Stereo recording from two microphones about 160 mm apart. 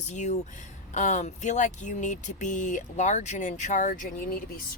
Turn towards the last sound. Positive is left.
turn(degrees=55)  # may be behind; listen again after turning